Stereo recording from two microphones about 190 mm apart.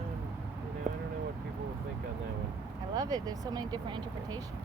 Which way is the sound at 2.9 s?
20° right (ahead or behind).